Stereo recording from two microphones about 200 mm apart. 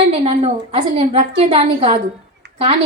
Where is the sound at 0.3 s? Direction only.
30° right (ahead or behind).